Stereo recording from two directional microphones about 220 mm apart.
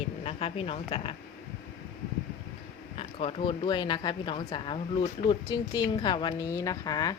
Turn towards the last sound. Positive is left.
turn(degrees=15)  # may be behind; listen again after turning